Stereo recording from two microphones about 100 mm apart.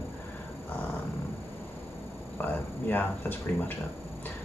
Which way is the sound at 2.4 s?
15° left (ahead or behind).